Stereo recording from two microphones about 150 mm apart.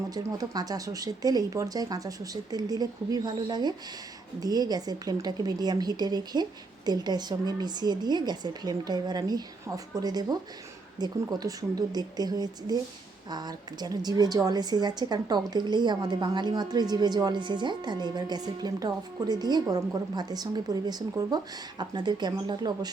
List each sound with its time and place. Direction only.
0.1 s a woman's voice: 25° right (ahead or behind)